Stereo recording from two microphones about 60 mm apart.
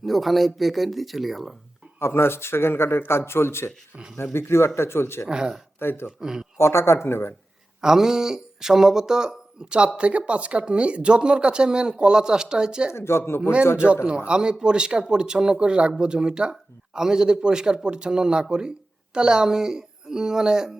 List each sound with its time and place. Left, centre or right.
0.0 s speech: centre
2.0 s speech: left
5.3 s speech: centre
5.8 s speech: left
6.1 s speech: centre
6.6 s speech: left
7.8 s speech: centre
12.9 s speech: left
13.7 s speech: centre